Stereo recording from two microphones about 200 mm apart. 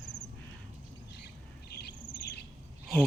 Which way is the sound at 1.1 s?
55° left (ahead or behind).